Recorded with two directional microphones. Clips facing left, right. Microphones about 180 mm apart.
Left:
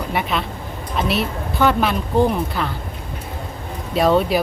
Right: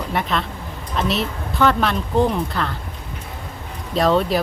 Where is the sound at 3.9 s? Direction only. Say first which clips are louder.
Left 1 dB; 5° left (ahead or behind).